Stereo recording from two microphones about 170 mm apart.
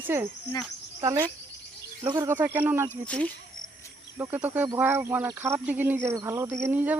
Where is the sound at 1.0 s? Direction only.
20° right (ahead or behind).